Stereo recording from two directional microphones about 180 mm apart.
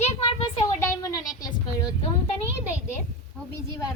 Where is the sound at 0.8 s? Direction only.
20° left (ahead or behind).